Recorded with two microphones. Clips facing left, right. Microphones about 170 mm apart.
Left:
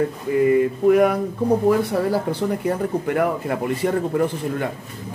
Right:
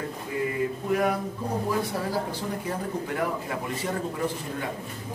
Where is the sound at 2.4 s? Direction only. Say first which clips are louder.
Left 9 dB; 60° left (ahead or behind).